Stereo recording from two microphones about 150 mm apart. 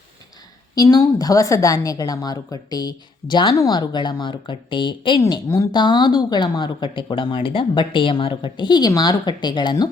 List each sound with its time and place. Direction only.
0.8 s a woman's voice: 25° left (ahead or behind)
5.2 s a woman's voice: 20° left (ahead or behind)